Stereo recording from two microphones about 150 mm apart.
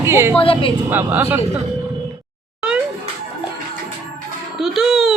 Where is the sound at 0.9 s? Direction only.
15° right (ahead or behind).